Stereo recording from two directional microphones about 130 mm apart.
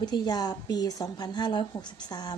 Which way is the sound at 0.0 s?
30° left (ahead or behind).